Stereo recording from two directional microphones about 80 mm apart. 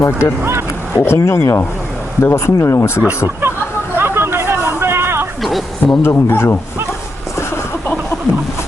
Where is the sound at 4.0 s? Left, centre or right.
Right.